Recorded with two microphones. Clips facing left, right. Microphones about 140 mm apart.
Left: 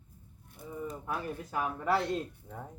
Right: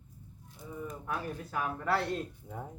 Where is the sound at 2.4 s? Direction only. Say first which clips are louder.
Right 2 dB; 10° right (ahead or behind).